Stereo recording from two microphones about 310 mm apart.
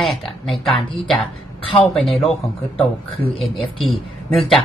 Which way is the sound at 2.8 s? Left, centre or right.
Centre.